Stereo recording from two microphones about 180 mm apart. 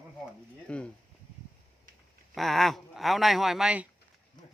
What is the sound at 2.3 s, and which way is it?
Speech, centre (ahead or behind).